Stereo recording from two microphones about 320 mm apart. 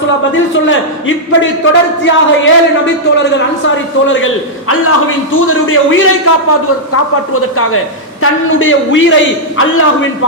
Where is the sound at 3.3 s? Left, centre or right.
Left.